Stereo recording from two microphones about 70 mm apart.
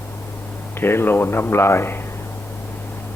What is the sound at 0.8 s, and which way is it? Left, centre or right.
A man's voice, left.